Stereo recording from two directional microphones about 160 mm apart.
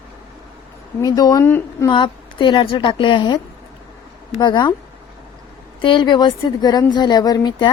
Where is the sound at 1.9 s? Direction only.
30° left (ahead or behind).